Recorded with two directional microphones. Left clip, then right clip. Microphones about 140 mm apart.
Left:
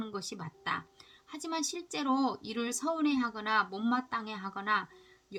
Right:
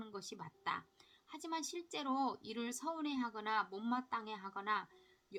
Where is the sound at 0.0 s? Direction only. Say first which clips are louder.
Left 9 dB; 40° right (ahead or behind).